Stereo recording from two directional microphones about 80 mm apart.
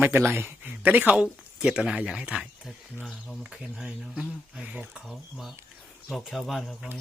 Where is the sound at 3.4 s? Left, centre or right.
Centre.